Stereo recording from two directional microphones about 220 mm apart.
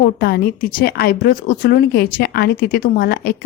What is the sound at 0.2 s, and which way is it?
A woman's voice, 45° left (ahead or behind).